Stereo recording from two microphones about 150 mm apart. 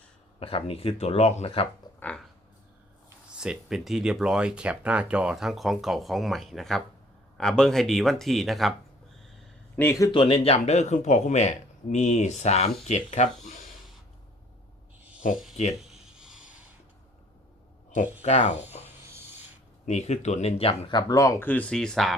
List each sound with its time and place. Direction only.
0.3 s speech: 40° left (ahead or behind)
2.0 s a sound: 10° left (ahead or behind)
3.3 s speech: 5° right (ahead or behind)
9.7 s speech: 15° left (ahead or behind)
10.1 s speech: 35° left (ahead or behind); by 13.7 s 55° left (ahead or behind)
15.2 s speech: 60° left (ahead or behind)
15.9 s a sound: 5° right (ahead or behind)
17.9 s speech: 50° left (ahead or behind)
19.1 s a sound: 15° right (ahead or behind)
19.8 s speech: 50° left (ahead or behind); by 22.1 s 5° left (ahead or behind)